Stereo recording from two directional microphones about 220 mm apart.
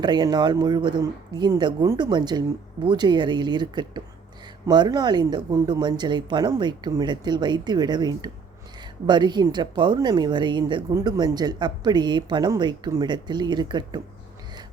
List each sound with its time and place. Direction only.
0.0 s speech: 20° right (ahead or behind)